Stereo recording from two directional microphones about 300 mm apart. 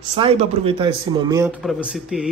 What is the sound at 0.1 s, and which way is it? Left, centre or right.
Speech, centre.